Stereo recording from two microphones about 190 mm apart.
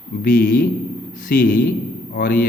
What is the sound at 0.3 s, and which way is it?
A man's voice, 45° left (ahead or behind).